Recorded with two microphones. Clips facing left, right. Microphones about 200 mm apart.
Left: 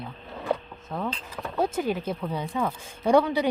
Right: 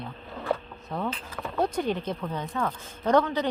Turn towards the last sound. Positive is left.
turn(degrees=10)  # may be behind; listen again after turning